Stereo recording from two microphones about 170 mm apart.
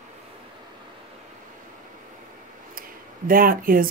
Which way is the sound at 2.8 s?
55° right (ahead or behind).